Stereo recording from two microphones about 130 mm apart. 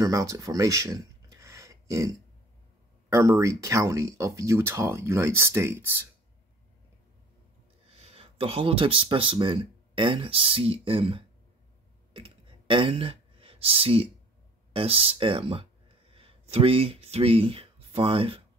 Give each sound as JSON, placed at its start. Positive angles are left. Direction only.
{"t": 0.0, "sound": "speech", "side_deg": -25}
{"t": 7.9, "sound": "speech", "side_deg": -50}
{"t": 12.1, "sound": "a sound", "side_deg": -45}
{"t": 14.7, "sound": "speech", "side_deg": -45}